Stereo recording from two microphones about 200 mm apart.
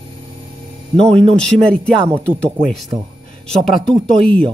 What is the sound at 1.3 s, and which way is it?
Speech, 5° left (ahead or behind).